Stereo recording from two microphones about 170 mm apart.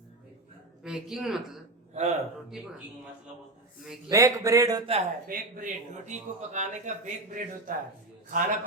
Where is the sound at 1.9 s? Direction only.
40° right (ahead or behind).